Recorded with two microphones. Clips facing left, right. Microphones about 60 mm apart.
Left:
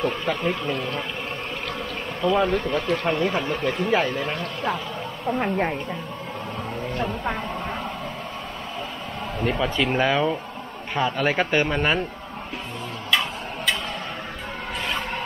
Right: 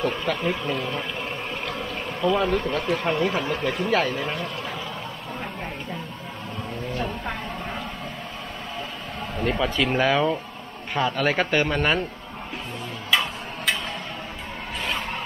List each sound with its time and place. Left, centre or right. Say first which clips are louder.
0.0 s speech: left 1 dB; centre
5.4 s a woman's voice: left 11 dB; left
6.9 s speech: left 3 dB; centre
9.4 s speech: even; centre
13.1 s a sound: even; centre